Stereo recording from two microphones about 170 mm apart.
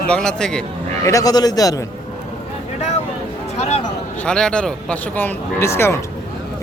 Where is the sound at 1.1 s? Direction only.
20° left (ahead or behind).